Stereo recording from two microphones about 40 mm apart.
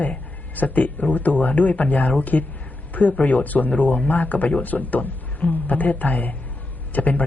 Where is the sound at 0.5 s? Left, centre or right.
Left.